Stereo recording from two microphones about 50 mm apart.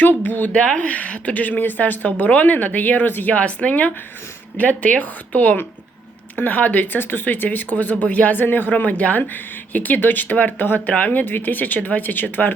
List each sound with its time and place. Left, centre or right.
0.0 s speech: left
0.5 s speech: left
3.3 s speech: left